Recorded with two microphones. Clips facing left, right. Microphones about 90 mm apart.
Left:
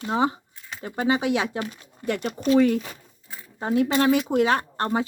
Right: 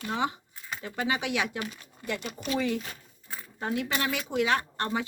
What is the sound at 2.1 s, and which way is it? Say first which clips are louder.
Speech: left 7 dB; 60° left (ahead or behind).